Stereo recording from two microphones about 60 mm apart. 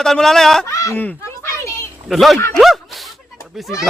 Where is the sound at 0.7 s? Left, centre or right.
Left.